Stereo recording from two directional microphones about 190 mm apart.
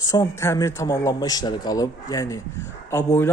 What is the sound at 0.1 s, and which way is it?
A man's voice, 15° left (ahead or behind).